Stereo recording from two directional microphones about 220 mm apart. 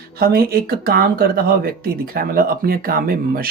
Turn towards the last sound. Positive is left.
turn(degrees=-40)  # may be behind; listen again after turning